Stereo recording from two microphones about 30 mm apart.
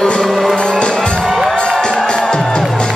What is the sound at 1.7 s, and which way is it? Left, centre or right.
Music, left.